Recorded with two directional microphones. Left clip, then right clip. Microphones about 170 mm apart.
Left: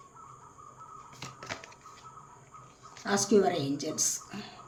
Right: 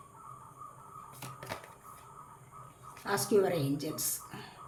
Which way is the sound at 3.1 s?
20° left (ahead or behind).